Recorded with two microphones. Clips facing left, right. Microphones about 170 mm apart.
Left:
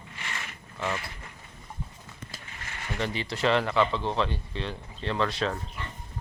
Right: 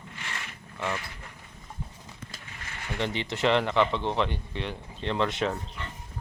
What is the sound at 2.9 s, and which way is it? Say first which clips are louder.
Speech: right 1 dB; 20° right (ahead or behind).